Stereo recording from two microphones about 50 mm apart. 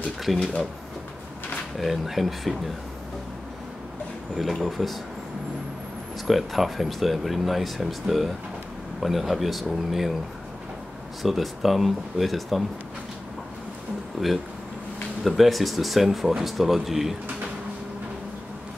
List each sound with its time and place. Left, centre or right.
0.2 s speech: centre
1.8 s speech: centre
4.6 s speech: centre
6.2 s speech: centre
11.2 s speech: centre
14.2 s speech: centre